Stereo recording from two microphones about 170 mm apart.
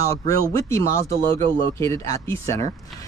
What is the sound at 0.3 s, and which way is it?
Speech, 20° left (ahead or behind).